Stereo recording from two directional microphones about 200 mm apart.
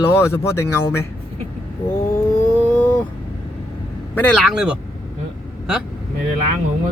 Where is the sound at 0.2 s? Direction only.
15° left (ahead or behind).